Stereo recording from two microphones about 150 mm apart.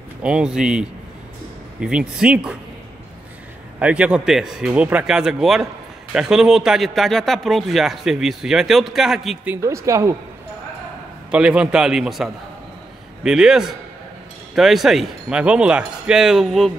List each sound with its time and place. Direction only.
0.2 s a man's voice: 5° right (ahead or behind)
3.8 s a man's voice: 5° right (ahead or behind)
9.4 s speech: 15° right (ahead or behind)
11.2 s a man's voice: 5° right (ahead or behind)